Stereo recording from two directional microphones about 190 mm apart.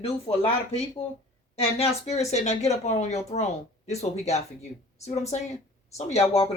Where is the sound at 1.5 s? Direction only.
35° left (ahead or behind).